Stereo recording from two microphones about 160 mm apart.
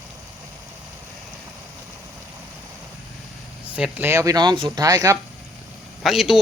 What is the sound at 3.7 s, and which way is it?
Speech, 10° right (ahead or behind).